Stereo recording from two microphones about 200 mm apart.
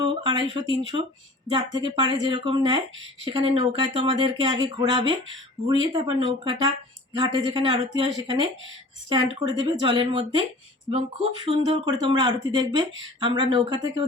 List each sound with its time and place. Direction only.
0.0 s speech: 20° right (ahead or behind)